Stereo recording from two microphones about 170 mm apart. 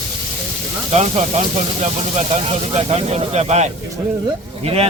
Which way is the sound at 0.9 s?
40° right (ahead or behind).